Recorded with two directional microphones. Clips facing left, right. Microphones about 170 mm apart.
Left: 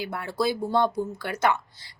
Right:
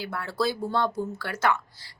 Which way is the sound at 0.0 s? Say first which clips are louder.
Left 1 dB; 15° left (ahead or behind).